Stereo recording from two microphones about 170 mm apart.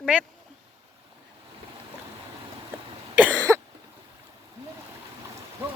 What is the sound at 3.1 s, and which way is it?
Cough, 10° right (ahead or behind).